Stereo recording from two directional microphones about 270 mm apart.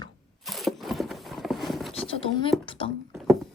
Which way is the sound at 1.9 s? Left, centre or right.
Left.